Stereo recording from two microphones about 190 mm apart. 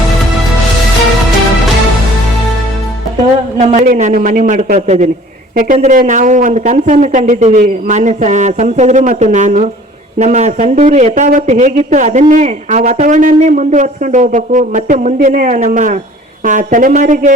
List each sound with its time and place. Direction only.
3.6 s speech: 30° right (ahead or behind)
3.8 s speech: 45° right (ahead or behind)